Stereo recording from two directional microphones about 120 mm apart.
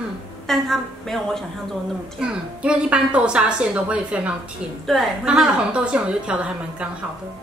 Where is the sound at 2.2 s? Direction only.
10° right (ahead or behind).